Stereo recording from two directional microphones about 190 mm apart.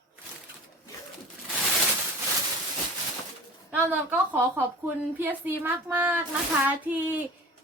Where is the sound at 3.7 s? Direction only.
10° right (ahead or behind).